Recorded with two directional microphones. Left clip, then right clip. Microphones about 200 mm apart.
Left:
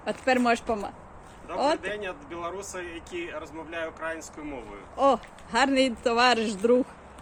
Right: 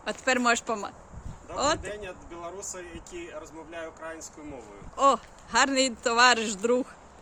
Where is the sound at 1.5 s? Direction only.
15° right (ahead or behind).